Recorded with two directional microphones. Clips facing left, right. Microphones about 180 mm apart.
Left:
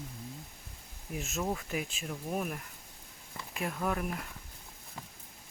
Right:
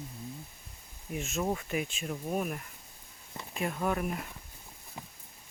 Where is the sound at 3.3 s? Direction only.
25° right (ahead or behind).